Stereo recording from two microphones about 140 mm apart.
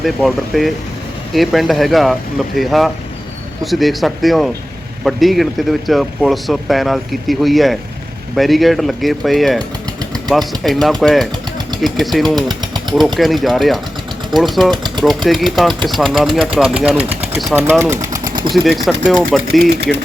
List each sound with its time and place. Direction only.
0.0 s speech: centre (ahead or behind)
12.4 s jackhammer: 30° right (ahead or behind)
13.1 s speech: centre (ahead or behind); by 18.5 s 30° right (ahead or behind)
18.5 s speech: centre (ahead or behind)